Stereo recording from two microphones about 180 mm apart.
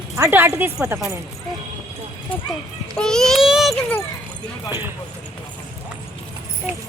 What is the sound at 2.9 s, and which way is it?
A child's voice, 5° left (ahead or behind).